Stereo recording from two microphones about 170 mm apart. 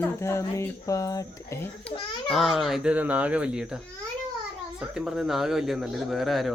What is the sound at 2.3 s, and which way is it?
Speech, centre (ahead or behind).